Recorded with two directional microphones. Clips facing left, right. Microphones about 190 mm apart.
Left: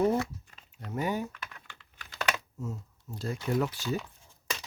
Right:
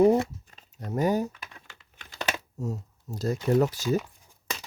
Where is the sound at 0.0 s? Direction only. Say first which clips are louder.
Right 7 dB; 30° right (ahead or behind).